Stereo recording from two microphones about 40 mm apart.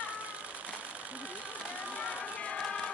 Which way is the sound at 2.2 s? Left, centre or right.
Left.